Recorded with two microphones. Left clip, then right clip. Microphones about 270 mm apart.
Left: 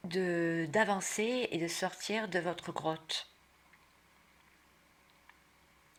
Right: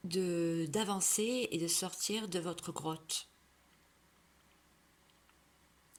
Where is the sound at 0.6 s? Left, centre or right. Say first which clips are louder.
Left 5 dB; right.